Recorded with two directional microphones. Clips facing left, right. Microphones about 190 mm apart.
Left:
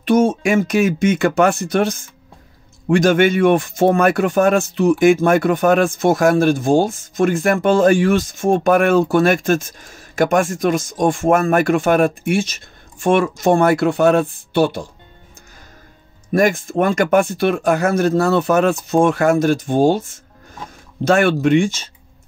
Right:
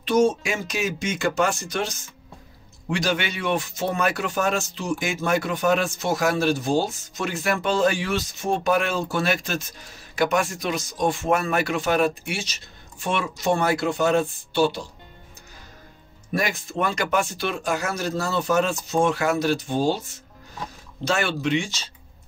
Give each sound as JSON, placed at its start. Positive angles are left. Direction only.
{"t": 0.0, "sound": "speech", "side_deg": 55}
{"t": 16.3, "sound": "speech", "side_deg": 50}